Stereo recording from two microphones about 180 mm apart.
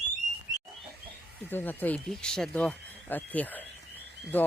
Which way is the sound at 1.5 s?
10° left (ahead or behind).